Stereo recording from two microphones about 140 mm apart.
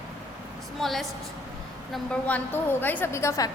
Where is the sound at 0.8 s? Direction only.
Centre (ahead or behind).